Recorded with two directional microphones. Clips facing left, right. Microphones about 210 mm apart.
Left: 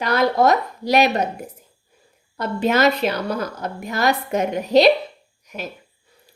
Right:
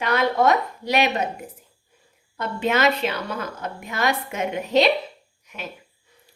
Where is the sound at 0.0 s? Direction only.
40° left (ahead or behind).